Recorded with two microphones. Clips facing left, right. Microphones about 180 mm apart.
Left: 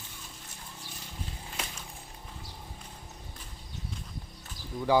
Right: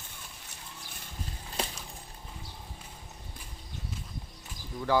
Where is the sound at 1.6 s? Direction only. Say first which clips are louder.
Right 6 dB; 30° right (ahead or behind).